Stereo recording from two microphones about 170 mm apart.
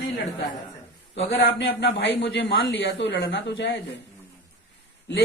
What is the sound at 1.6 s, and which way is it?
A man's voice, 90° left.